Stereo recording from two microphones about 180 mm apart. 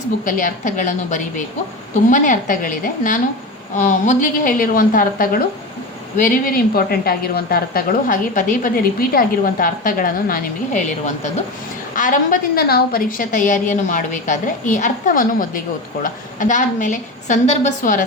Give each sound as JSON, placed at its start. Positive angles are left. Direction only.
{"t": 0.3, "sound": "a woman's voice", "side_deg": 45}